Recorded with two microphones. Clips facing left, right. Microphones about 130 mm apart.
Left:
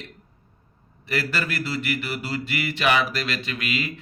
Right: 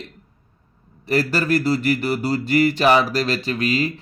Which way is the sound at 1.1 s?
40° right (ahead or behind).